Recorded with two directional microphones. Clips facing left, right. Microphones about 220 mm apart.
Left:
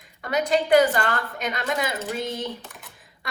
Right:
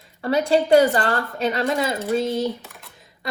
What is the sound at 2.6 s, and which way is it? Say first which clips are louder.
Typing: even; centre (ahead or behind).